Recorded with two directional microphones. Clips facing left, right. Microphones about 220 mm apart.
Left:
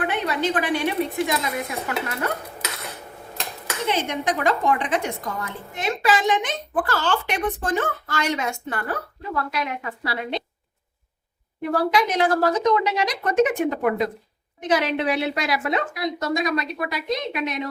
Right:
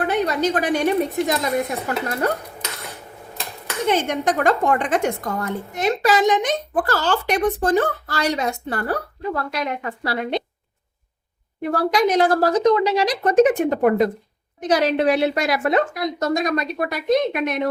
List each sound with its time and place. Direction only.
0.0 s a woman's voice: 40° right (ahead or behind)
3.8 s a woman's voice: 50° right (ahead or behind)
11.7 s a woman's voice: 40° right (ahead or behind)